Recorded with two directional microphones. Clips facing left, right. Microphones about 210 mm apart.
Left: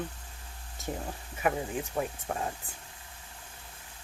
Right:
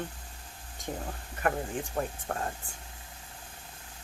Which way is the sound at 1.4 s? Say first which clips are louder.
Left 1 dB; 5° left (ahead or behind).